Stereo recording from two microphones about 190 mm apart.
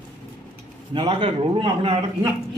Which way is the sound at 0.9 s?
30° right (ahead or behind).